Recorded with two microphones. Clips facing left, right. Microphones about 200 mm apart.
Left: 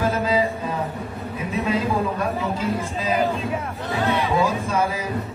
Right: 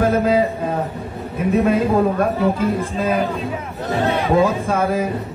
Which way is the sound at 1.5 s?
55° right (ahead or behind).